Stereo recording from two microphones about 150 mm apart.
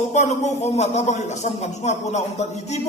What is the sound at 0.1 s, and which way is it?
A man's voice, 50° left (ahead or behind).